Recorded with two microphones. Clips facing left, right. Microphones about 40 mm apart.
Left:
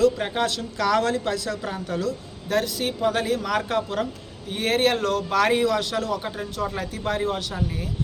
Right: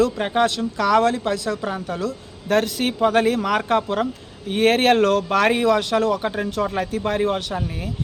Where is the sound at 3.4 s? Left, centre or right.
Right.